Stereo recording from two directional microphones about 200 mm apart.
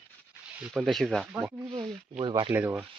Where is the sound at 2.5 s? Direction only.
10° right (ahead or behind).